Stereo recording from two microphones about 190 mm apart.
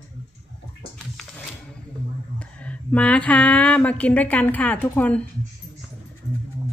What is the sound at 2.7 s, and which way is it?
A woman's voice, 5° left (ahead or behind).